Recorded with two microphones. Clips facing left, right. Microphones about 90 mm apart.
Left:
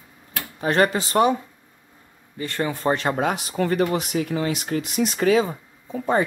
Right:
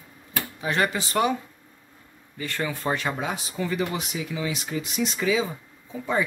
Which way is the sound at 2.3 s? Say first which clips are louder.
Left 4 dB; 35° left (ahead or behind).